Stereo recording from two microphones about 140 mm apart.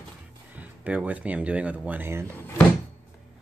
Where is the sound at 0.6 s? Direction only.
10° right (ahead or behind).